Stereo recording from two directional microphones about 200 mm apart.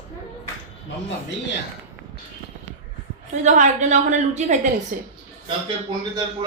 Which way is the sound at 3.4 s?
35° right (ahead or behind).